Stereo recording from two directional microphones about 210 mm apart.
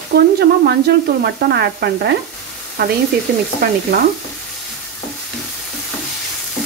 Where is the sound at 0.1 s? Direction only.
50° right (ahead or behind).